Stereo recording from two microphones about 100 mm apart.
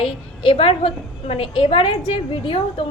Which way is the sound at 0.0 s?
70° left (ahead or behind).